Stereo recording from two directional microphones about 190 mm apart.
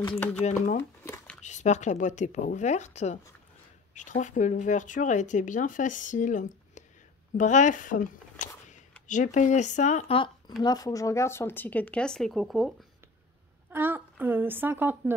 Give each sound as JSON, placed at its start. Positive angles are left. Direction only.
{"t": 0.4, "sound": "speech", "side_deg": 35}
{"t": 0.7, "sound": "crumpling", "side_deg": 15}
{"t": 1.4, "sound": "speech", "side_deg": 40}
{"t": 13.7, "sound": "a woman's voice", "side_deg": -10}